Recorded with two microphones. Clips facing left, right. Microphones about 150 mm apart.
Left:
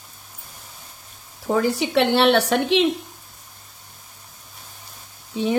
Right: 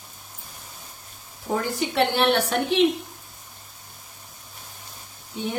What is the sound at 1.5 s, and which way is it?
Speech, 90° left.